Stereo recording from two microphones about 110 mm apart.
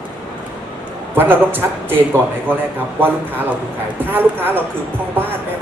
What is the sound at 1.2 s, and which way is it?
A man's voice, 20° right (ahead or behind).